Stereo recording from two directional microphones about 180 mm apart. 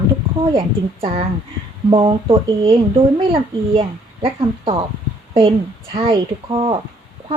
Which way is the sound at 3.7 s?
30° right (ahead or behind).